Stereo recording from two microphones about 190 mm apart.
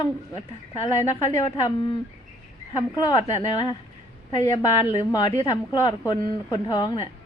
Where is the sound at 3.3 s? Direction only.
20° left (ahead or behind).